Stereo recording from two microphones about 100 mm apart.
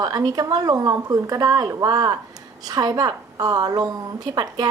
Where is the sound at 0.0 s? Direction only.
40° right (ahead or behind).